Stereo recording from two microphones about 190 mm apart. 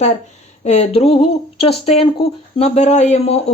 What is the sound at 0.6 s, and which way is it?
Speech, 35° left (ahead or behind).